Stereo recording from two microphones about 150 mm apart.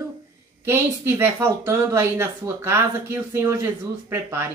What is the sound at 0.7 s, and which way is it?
Speech, 15° right (ahead or behind).